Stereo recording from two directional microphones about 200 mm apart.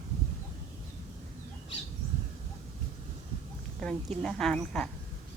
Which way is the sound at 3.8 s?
5° left (ahead or behind).